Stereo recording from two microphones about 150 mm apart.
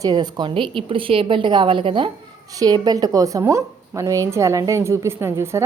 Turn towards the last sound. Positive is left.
turn(degrees=-15)  # may be behind; listen again after turning